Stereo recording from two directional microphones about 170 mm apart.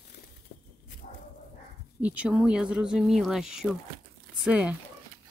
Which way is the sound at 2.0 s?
5° right (ahead or behind).